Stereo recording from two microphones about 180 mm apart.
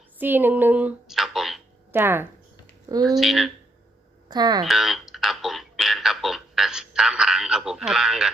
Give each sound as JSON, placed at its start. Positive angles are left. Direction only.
{"t": 0.2, "sound": "speech", "side_deg": -10}
{"t": 1.9, "sound": "speech", "side_deg": -10}
{"t": 3.2, "sound": "speech", "side_deg": 0}
{"t": 4.3, "sound": "speech", "side_deg": -20}
{"t": 4.6, "sound": "a sound", "side_deg": 0}